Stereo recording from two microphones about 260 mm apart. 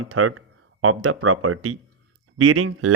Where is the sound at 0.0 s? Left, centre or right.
Right.